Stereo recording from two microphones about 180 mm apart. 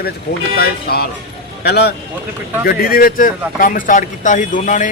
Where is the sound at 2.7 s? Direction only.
55° left (ahead or behind).